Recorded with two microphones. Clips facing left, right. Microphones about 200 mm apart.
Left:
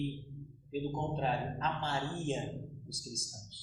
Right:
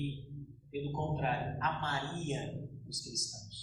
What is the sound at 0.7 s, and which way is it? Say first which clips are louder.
A man's voice: left 1 dB; 30° left (ahead or behind).